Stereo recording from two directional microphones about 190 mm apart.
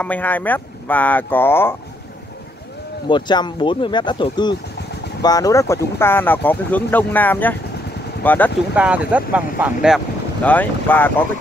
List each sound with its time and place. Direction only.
0.0 s speech: 10° left (ahead or behind)
3.1 s speech: 25° left (ahead or behind)
8.5 s speech: 5° right (ahead or behind)
10.4 s speech: 10° left (ahead or behind)